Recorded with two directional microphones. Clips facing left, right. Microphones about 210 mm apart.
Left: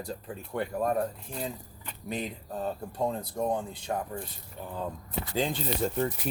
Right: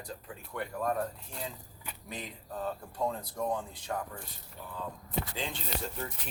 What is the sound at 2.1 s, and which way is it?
Speech, 25° left (ahead or behind).